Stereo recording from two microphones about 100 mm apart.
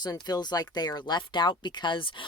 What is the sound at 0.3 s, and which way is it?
Speech, 45° left (ahead or behind).